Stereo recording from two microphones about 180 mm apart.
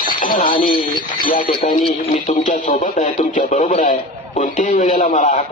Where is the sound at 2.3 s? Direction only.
45° left (ahead or behind).